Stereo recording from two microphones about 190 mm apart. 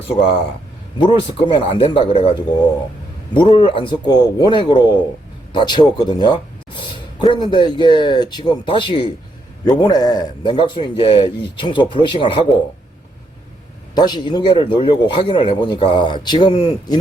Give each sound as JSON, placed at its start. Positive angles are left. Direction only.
{"t": 0.9, "sound": "a man's voice", "side_deg": 25}
{"t": 3.3, "sound": "a man's voice", "side_deg": 25}
{"t": 13.9, "sound": "a man's voice", "side_deg": 20}